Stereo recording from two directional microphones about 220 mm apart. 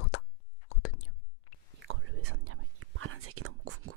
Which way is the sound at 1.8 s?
70° right (ahead or behind).